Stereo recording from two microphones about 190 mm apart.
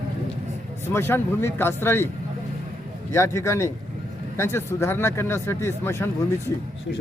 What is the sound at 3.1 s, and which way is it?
Speech, 15° left (ahead or behind).